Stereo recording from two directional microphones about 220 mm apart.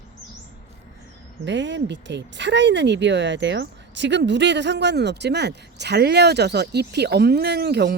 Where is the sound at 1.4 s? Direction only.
55° right (ahead or behind).